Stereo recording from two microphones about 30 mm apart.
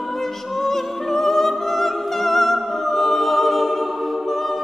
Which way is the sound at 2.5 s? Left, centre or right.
Centre.